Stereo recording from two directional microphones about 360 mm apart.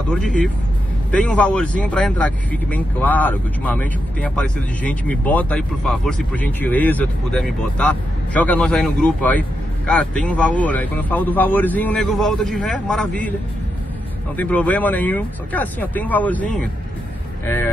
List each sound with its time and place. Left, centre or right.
0.1 s speech: centre
14.3 s speech: centre